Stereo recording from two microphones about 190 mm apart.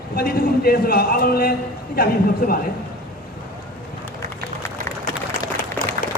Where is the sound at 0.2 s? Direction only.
55° left (ahead or behind).